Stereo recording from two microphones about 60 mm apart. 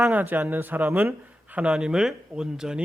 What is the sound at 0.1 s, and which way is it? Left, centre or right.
Speech, right.